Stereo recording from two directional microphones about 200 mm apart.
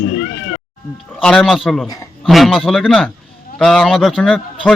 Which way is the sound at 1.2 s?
Centre (ahead or behind).